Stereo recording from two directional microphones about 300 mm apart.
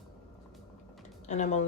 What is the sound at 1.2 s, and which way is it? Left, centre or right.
Speech, left.